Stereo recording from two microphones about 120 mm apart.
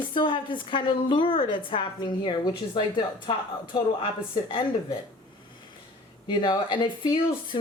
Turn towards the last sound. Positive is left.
turn(degrees=40)  # may be behind; listen again after turning